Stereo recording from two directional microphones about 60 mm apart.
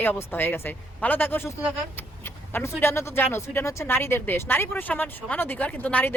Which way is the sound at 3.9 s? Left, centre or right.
Left.